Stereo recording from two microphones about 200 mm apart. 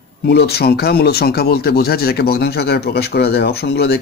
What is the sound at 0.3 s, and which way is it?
Speech, 55° left (ahead or behind).